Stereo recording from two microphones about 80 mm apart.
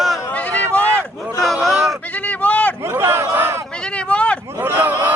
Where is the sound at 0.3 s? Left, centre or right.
Centre.